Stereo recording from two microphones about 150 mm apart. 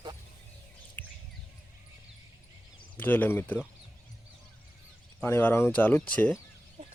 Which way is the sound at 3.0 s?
10° left (ahead or behind).